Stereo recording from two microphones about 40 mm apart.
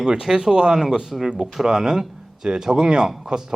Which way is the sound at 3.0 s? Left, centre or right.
Centre.